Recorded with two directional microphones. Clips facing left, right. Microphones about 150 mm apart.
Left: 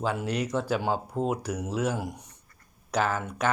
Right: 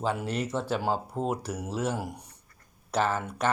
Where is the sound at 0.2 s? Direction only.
Centre (ahead or behind).